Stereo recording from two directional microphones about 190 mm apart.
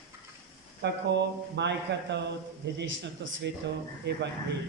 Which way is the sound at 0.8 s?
65° right (ahead or behind).